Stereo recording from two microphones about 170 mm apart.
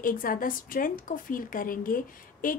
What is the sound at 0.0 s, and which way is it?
A woman's voice, 55° left (ahead or behind).